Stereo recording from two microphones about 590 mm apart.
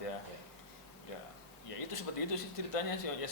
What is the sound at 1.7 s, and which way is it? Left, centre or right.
A man's voice, left.